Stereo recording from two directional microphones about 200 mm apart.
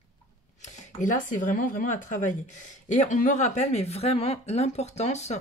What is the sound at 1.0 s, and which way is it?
A woman's voice, 40° left (ahead or behind).